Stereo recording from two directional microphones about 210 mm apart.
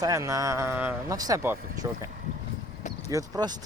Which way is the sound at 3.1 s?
15° right (ahead or behind).